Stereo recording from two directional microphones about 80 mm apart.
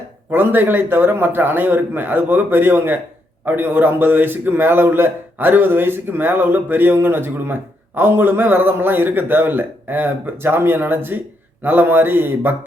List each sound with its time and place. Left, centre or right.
0.3 s a man's voice: right